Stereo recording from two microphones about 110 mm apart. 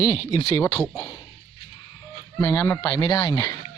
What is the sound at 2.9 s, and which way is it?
Speech, 40° left (ahead or behind).